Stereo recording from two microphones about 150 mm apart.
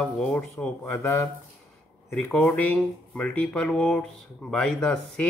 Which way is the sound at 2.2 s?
10° left (ahead or behind).